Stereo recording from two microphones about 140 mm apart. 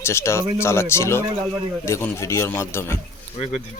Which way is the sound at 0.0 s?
20° left (ahead or behind).